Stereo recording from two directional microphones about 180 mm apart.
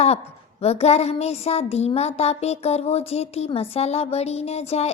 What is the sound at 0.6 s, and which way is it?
Speech, 35° left (ahead or behind).